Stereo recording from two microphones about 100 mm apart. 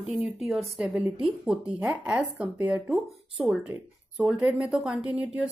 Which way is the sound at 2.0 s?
15° right (ahead or behind).